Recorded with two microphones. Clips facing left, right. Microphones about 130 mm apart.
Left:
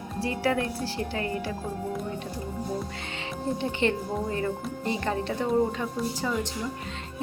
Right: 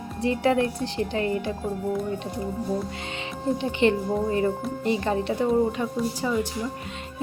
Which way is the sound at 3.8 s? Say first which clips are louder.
Right 7 dB; 20° right (ahead or behind).